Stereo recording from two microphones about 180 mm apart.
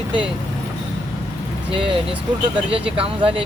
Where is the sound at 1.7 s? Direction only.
30° right (ahead or behind).